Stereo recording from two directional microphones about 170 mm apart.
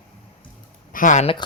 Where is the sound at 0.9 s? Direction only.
50° left (ahead or behind).